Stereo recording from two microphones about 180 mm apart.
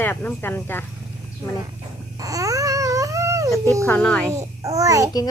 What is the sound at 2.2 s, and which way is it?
Babbling, 20° right (ahead or behind).